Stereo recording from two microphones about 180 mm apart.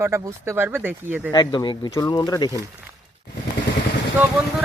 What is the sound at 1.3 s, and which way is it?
Speech, 25° left (ahead or behind).